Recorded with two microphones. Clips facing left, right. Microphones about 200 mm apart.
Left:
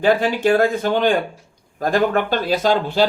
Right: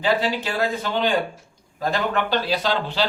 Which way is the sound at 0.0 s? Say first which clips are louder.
Left 6 dB; 50° left (ahead or behind).